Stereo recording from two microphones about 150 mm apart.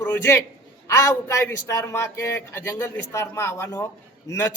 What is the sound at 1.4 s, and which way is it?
Speech, 20° left (ahead or behind).